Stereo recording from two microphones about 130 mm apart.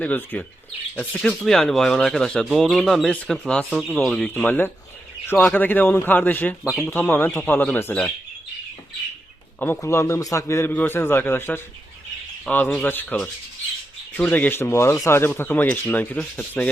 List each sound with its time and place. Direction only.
0.0 s a man's voice: 15° left (ahead or behind)
3.7 s speech: 5° right (ahead or behind)
3.9 s a man's voice: 5° left (ahead or behind)
5.2 s bird: 15° left (ahead or behind)
5.5 s a man's voice: 15° left (ahead or behind)
9.6 s a man's voice: 20° left (ahead or behind); by 16.6 s 5° left (ahead or behind)